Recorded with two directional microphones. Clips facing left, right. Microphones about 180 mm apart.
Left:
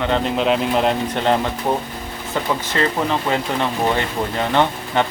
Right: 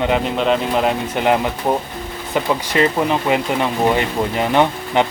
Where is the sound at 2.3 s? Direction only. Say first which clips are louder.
Right 4 dB; 15° right (ahead or behind).